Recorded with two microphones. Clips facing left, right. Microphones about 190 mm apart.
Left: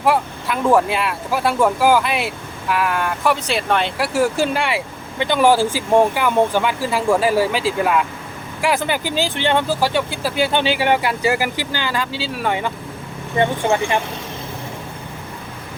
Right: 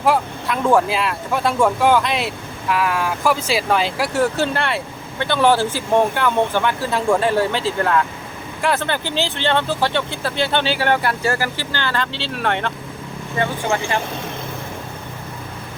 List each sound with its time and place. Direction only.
0.0 s speech: centre (ahead or behind)
13.4 s speech: 20° left (ahead or behind)